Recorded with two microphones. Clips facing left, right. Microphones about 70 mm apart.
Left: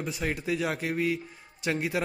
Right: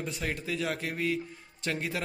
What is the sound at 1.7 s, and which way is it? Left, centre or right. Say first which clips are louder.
Music: left 4 dB; centre.